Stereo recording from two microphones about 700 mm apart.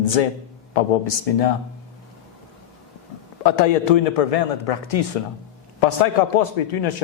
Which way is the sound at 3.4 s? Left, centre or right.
Left.